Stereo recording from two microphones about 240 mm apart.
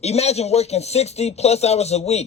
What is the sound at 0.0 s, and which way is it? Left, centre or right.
Speech, left.